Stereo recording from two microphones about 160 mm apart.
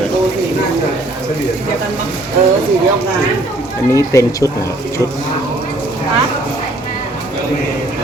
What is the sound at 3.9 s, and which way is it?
Speech, 20° left (ahead or behind).